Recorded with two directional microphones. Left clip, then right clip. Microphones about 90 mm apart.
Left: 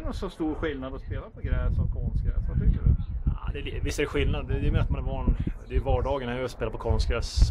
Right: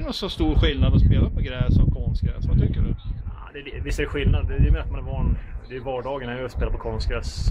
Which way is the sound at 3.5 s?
35° left (ahead or behind).